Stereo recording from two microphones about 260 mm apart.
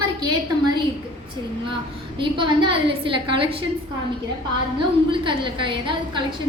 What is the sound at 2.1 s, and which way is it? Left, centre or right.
A woman's voice, centre.